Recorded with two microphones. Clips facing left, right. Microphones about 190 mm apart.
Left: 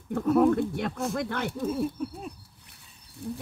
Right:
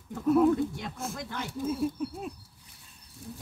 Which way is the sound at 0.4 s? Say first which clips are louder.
Left 3 dB; 60° left (ahead or behind).